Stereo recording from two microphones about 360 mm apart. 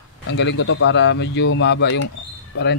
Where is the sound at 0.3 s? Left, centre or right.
Left.